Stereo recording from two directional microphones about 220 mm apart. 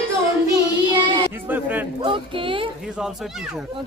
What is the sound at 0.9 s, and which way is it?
Child singing, 20° right (ahead or behind).